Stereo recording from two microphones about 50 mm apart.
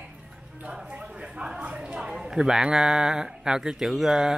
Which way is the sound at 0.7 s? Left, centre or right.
Right.